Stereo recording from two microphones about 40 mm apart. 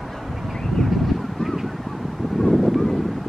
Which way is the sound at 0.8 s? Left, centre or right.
Centre.